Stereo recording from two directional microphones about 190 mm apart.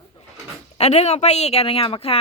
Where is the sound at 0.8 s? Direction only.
35° left (ahead or behind).